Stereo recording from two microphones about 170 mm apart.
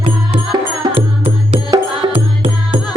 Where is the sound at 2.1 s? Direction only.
30° right (ahead or behind).